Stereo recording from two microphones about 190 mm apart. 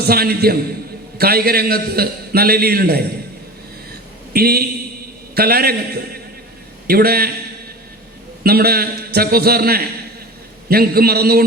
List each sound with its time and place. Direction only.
0.0 s a man's voice: 55° right (ahead or behind)
4.3 s a man's voice: 55° right (ahead or behind)
8.4 s a man's voice: 55° right (ahead or behind)